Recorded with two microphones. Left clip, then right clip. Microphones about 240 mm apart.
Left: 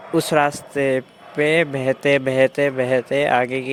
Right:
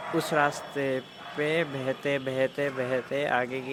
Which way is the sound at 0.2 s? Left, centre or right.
Left.